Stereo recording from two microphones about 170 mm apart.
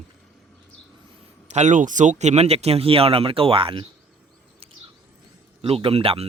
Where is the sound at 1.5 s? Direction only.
45° right (ahead or behind).